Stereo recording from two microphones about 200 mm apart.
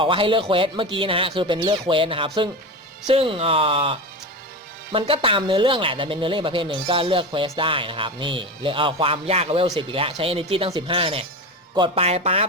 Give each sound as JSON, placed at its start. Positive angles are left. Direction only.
{"t": 0.0, "sound": "a woman's voice", "side_deg": -25}